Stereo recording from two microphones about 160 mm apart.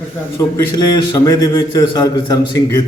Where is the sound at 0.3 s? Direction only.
25° left (ahead or behind).